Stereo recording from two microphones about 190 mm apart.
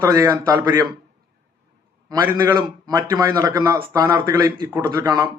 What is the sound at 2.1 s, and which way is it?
A man's voice, 20° right (ahead or behind).